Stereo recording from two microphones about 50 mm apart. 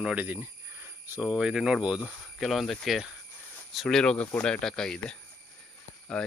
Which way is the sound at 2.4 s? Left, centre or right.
Centre.